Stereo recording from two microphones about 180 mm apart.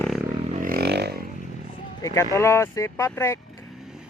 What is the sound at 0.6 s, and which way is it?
Vehicle, 60° right (ahead or behind).